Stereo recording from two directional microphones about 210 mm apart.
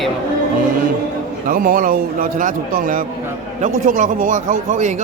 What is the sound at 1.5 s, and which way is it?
A man's voice, 40° right (ahead or behind).